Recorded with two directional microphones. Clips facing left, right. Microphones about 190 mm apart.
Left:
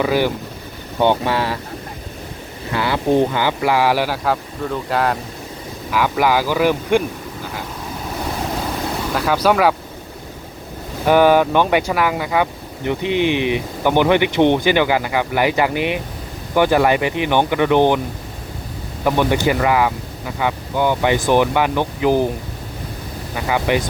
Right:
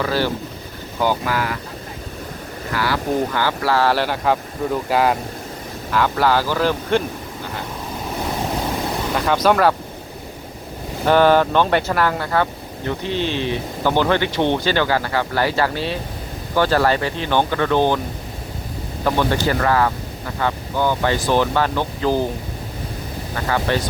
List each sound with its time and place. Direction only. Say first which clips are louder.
0.0 s speech: left 3 dB; 15° left (ahead or behind)
0.9 s speech: left 4 dB; 25° left (ahead or behind)
2.7 s speech: left 4 dB; 20° left (ahead or behind); by 5.1 s 5° right (ahead or behind)
5.9 s speech: left 1 dB; 10° left (ahead or behind)
9.1 s speech: left 1 dB; 5° left (ahead or behind)
11.0 s speech: left 1 dB; 10° left (ahead or behind)
19.0 s speech: left 2 dB; 15° left (ahead or behind)
23.3 s speech: left 2 dB; 10° left (ahead or behind)